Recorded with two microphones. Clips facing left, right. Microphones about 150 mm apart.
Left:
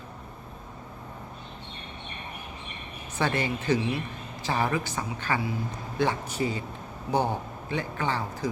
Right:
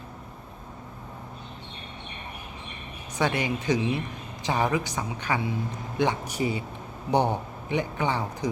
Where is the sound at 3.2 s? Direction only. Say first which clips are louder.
Right 1 dB; 15° right (ahead or behind).